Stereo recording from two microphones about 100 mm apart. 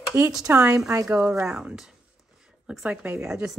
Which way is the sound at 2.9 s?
20° right (ahead or behind).